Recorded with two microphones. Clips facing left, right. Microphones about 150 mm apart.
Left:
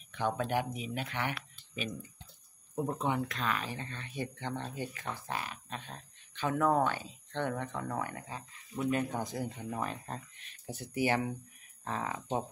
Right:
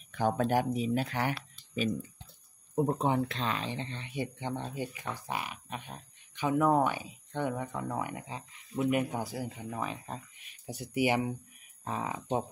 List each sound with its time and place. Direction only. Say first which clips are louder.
0.1 s speech: right 4 dB; 45° right (ahead or behind); by 12.4 s 15° right (ahead or behind)